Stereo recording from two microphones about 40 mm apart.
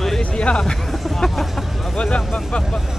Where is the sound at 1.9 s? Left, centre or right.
Left.